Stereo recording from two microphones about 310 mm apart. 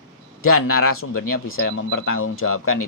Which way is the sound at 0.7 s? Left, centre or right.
Left.